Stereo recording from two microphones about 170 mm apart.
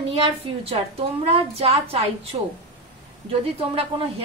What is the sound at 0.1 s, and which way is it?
A woman's voice, 35° right (ahead or behind).